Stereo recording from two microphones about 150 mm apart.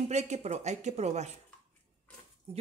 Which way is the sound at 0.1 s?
50° right (ahead or behind).